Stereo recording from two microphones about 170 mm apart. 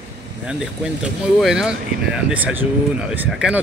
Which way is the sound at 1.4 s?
5° right (ahead or behind).